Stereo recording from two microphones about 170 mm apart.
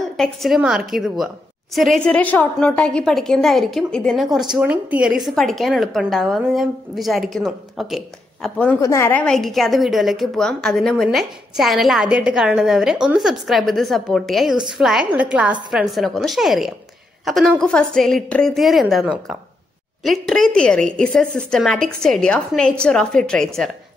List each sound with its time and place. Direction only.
0.2 s a woman's voice: centre (ahead or behind)
8.8 s a woman's voice: 15° left (ahead or behind)